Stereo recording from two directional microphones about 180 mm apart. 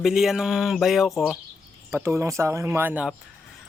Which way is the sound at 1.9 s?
15° right (ahead or behind).